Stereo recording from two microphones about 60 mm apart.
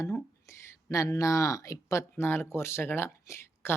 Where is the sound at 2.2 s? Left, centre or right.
Left.